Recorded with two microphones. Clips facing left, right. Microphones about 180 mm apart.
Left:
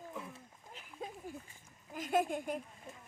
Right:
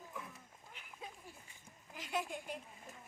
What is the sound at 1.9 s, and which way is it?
Speech, 50° left (ahead or behind).